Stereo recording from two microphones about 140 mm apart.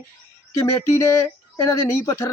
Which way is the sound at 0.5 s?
20° left (ahead or behind).